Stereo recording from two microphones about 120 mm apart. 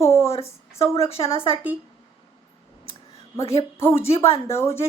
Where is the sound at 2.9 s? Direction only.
50° left (ahead or behind).